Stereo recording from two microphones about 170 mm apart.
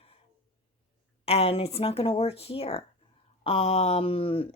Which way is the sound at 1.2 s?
35° left (ahead or behind).